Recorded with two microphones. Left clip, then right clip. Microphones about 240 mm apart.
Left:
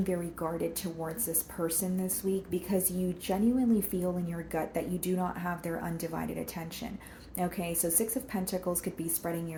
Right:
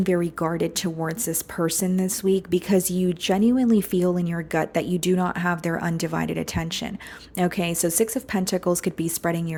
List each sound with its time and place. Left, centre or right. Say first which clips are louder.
0.0 s speech: right 10 dB; right